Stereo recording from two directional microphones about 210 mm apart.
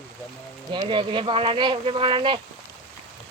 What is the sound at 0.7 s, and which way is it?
Speech, 25° right (ahead or behind).